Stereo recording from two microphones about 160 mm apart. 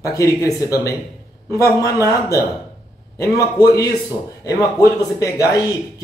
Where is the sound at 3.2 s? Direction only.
20° left (ahead or behind).